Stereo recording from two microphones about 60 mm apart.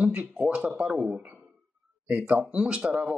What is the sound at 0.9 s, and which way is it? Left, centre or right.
Speech, centre.